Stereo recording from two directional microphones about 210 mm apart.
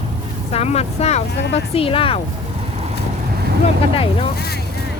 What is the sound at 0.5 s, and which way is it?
Speech, 30° left (ahead or behind).